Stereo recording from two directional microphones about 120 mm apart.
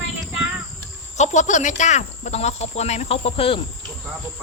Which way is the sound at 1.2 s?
85° left.